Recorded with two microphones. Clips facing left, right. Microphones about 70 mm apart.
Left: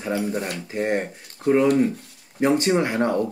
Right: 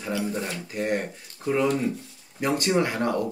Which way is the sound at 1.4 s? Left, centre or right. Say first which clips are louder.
Left 6 dB; left.